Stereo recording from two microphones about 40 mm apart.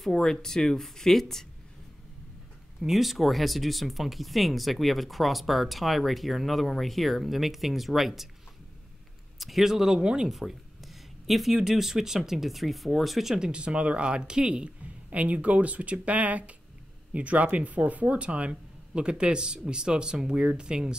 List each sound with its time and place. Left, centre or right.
0.1 s speech: centre
2.8 s speech: centre
9.4 s speech: centre
10.3 s a sound: centre
11.6 s speech: centre
13.4 s speech: right